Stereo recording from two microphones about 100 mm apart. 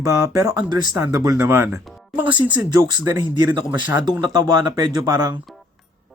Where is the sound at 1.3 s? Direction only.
25° right (ahead or behind).